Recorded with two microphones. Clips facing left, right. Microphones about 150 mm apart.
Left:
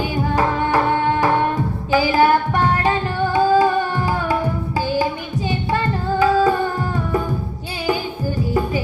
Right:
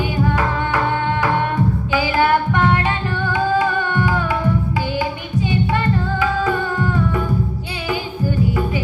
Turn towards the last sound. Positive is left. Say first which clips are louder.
# right 2 dB
turn(degrees=40)  # may be behind; listen again after turning